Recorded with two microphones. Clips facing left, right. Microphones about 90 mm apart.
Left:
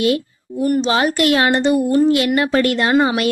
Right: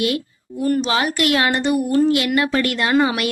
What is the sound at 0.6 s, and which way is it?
A woman's voice, 25° left (ahead or behind).